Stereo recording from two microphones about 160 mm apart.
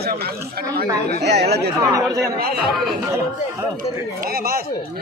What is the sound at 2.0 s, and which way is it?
Speech, 20° right (ahead or behind).